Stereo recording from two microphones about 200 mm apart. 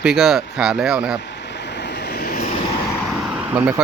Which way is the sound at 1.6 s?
60° left (ahead or behind).